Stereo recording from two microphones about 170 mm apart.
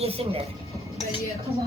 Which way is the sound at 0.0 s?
35° right (ahead or behind).